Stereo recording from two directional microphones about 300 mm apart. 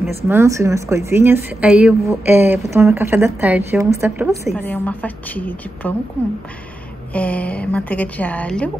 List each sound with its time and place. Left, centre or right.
0.0 s a woman's voice: centre
7.1 s speech: centre